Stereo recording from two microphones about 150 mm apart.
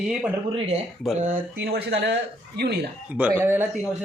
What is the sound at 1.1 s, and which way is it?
Speech, 60° right (ahead or behind).